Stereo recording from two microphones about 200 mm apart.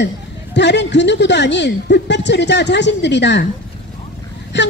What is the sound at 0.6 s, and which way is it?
Speech, 60° left (ahead or behind).